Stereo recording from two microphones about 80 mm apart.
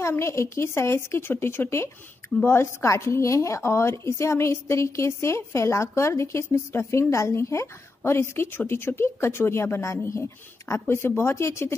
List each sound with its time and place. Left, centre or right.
0.0 s a woman's voice: left